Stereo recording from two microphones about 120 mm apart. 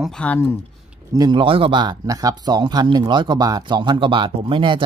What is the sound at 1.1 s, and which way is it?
Speech, 30° right (ahead or behind).